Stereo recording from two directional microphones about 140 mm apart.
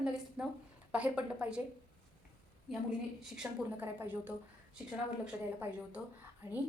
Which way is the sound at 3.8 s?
15° right (ahead or behind).